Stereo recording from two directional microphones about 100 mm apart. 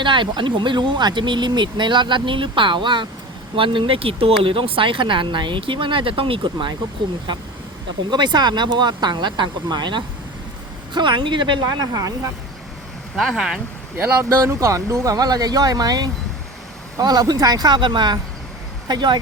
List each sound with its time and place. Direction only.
0.0 s speech: 55° right (ahead or behind)
3.5 s speech: 60° right (ahead or behind)
8.1 s speech: 45° right (ahead or behind)
13.1 s speech: 5° right (ahead or behind)
14.2 s speech: 30° right (ahead or behind)